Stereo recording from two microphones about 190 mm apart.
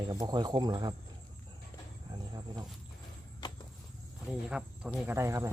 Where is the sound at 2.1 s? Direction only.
20° right (ahead or behind).